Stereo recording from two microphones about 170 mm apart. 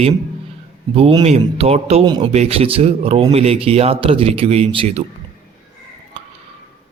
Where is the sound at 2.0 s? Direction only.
25° right (ahead or behind).